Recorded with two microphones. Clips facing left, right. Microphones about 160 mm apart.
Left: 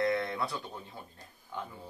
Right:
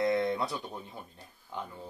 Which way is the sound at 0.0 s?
20° right (ahead or behind).